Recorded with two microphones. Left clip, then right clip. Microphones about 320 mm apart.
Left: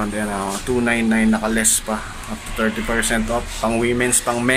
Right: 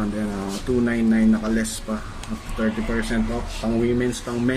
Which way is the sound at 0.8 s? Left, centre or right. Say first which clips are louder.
Left 4 dB; left.